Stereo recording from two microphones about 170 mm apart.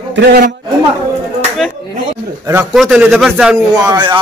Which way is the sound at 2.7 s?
5° right (ahead or behind).